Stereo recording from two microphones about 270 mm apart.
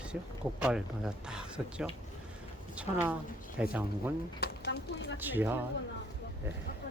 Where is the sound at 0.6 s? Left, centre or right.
Centre.